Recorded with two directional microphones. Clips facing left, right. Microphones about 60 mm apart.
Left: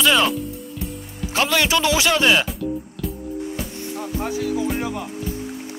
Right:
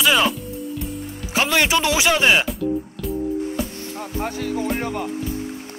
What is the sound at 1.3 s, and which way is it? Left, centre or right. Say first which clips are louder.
Speech: right 1 dB; centre.